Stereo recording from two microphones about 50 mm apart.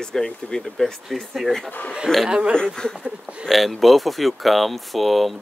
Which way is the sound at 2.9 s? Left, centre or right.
Centre.